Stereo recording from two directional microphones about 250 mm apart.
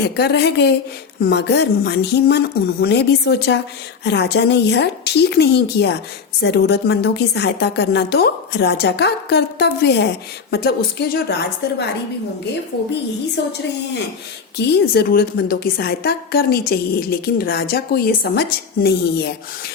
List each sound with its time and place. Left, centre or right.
0.0 s a woman's voice: left
14.7 s a woman's voice: left